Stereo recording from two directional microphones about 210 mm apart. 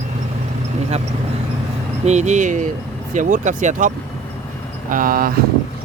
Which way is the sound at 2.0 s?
35° right (ahead or behind).